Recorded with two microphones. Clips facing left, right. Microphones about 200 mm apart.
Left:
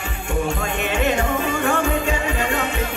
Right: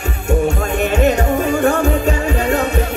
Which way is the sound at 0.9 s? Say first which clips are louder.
Right 5 dB; 40° right (ahead or behind).